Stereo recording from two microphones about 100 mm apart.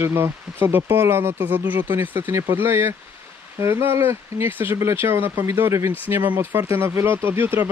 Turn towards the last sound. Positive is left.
turn(degrees=-20)  # may be behind; listen again after turning